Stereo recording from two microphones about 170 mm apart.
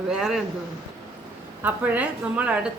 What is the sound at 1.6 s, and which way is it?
A woman's voice, 10° right (ahead or behind).